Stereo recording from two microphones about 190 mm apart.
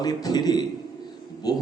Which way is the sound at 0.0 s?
20° left (ahead or behind).